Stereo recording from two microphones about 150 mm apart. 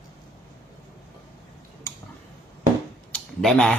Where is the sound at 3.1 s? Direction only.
5° left (ahead or behind).